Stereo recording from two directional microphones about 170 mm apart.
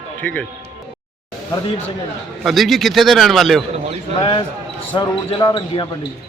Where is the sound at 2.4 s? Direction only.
Centre (ahead or behind).